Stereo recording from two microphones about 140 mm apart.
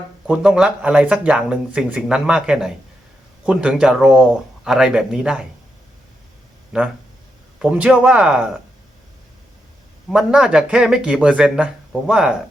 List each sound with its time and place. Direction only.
0.3 s speech: 5° right (ahead or behind)
6.7 s speech: 5° right (ahead or behind)
10.1 s speech: 5° right (ahead or behind)